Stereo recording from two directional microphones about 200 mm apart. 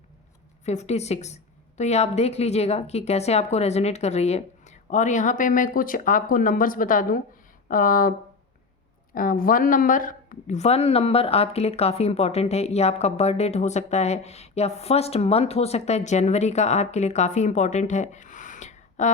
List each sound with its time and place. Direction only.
0.6 s speech: 35° left (ahead or behind)
9.1 s speech: 45° left (ahead or behind)